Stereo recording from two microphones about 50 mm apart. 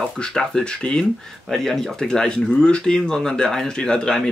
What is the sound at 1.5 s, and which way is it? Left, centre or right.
Speech, centre.